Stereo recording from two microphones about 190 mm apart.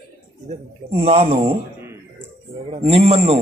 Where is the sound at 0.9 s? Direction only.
30° right (ahead or behind).